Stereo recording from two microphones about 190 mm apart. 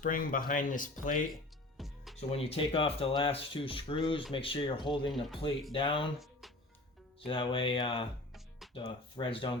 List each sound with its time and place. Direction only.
0.0 s speech: 45° left (ahead or behind)
1.8 s music: centre (ahead or behind)
2.3 s speech: 30° left (ahead or behind)
7.3 s speech: 25° left (ahead or behind)
8.3 s music: centre (ahead or behind)
8.7 s speech: 25° left (ahead or behind)